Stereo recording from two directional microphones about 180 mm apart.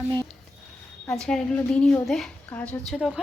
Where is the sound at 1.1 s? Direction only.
5° left (ahead or behind).